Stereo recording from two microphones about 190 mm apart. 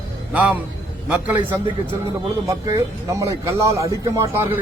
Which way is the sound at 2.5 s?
15° right (ahead or behind).